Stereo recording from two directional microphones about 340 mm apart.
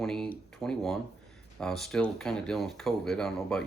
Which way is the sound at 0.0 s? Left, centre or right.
Centre.